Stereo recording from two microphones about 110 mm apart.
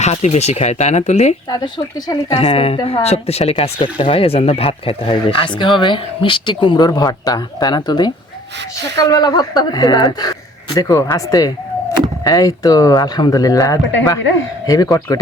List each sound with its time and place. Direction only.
0.0 s speech: 85° left
1.5 s speech: 35° left (ahead or behind)
2.3 s a woman's voice: 65° left (ahead or behind); by 15.2 s 35° left (ahead or behind)